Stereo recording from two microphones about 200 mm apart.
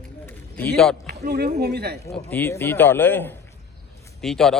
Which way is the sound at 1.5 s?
55° right (ahead or behind).